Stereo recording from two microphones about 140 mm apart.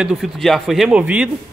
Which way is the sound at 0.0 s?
5° right (ahead or behind).